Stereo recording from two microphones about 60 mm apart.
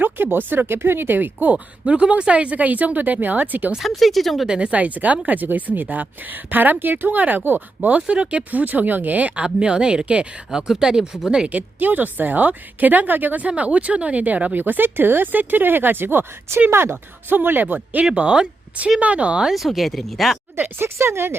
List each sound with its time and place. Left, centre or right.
0.0 s a woman's voice: right
1.5 s speech: centre
3.8 s speech: centre
4.4 s speech: centre; by 7.6 s right
7.8 s speech: right
11.4 s a woman's voice: right
18.1 s a woman's voice: centre
19.5 s speech: centre
20.6 s speech: right